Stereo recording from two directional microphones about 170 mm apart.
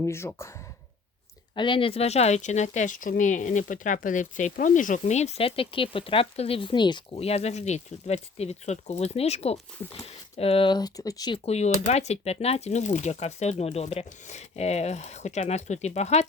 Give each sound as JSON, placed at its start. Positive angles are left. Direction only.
{"t": 0.0, "sound": "speech", "side_deg": 15}
{"t": 1.5, "sound": "speech", "side_deg": 30}
{"t": 11.4, "sound": "speech", "side_deg": 40}